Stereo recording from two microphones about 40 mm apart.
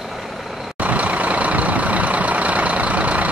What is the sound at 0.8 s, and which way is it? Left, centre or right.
Vehicle, right.